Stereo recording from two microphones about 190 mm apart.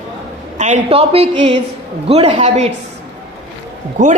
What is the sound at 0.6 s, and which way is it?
A woman's voice, 40° right (ahead or behind).